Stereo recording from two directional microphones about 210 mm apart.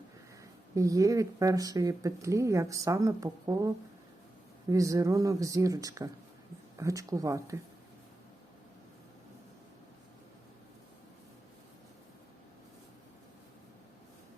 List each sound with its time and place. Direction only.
0.8 s speech: 15° right (ahead or behind)
4.7 s speech: 15° right (ahead or behind)